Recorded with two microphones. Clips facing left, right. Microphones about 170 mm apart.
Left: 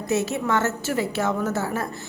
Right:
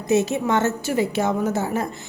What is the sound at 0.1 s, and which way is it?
A woman's voice, 20° right (ahead or behind).